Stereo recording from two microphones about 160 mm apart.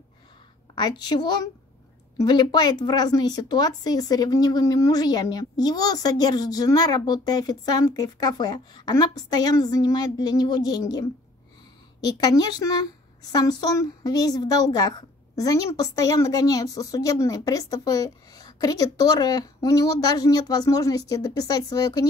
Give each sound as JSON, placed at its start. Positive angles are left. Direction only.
{"t": 0.7, "sound": "speech", "side_deg": 25}